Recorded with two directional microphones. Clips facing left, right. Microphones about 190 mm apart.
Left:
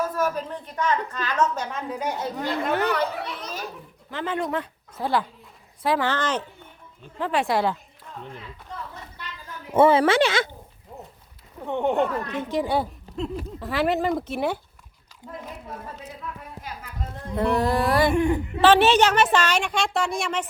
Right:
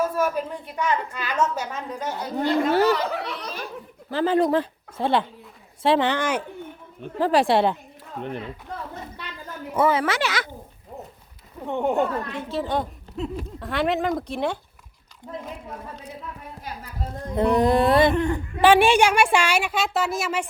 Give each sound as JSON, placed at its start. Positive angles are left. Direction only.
{"t": 0.0, "sound": "a woman's voice", "side_deg": -10}
{"t": 1.9, "sound": "speech", "side_deg": 10}
{"t": 2.4, "sound": "speech", "side_deg": -35}
{"t": 4.1, "sound": "speech", "side_deg": -35}
{"t": 5.8, "sound": "music", "side_deg": -25}
{"t": 6.1, "sound": "a woman's voice", "side_deg": -10}
{"t": 7.2, "sound": "speech", "side_deg": -35}
{"t": 8.2, "sound": "speech", "side_deg": -60}
{"t": 9.7, "sound": "speech", "side_deg": 30}
{"t": 11.6, "sound": "a woman's voice", "side_deg": -10}
{"t": 12.3, "sound": "speech", "side_deg": 15}
{"t": 17.3, "sound": "music", "side_deg": -20}
{"t": 18.1, "sound": "speech", "side_deg": 15}
{"t": 18.6, "sound": "a woman's voice", "side_deg": -10}